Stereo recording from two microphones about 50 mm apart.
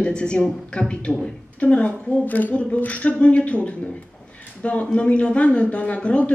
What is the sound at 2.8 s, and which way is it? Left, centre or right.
Speech, left.